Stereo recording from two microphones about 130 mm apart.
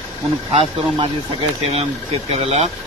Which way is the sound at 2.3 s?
55° right (ahead or behind).